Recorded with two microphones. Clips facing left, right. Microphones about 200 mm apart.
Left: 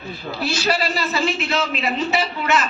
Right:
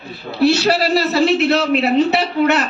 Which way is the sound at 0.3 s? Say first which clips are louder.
Right 8 dB; 65° right (ahead or behind).